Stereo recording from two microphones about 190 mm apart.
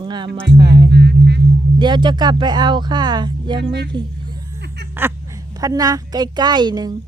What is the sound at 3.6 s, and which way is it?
Speech, 60° right (ahead or behind).